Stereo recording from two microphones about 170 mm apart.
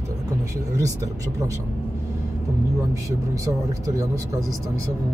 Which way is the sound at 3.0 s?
20° right (ahead or behind).